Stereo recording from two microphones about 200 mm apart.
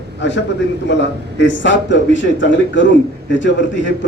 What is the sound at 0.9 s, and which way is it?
A man's voice, 65° left (ahead or behind).